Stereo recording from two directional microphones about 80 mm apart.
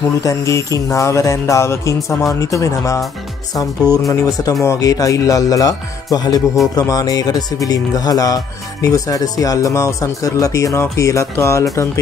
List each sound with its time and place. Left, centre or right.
0.2 s music: left
4.1 s music: left
4.6 s speech: left